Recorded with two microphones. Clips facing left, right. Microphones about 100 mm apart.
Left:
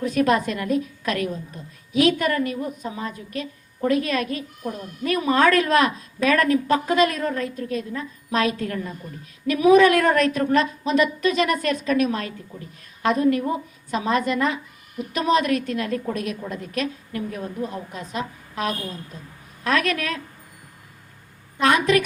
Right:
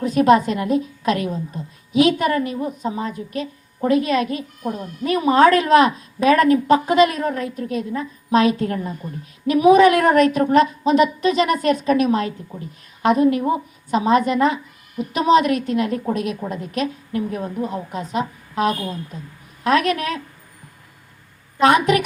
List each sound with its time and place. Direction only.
0.0 s speech: 20° right (ahead or behind)
21.6 s speech: 20° right (ahead or behind)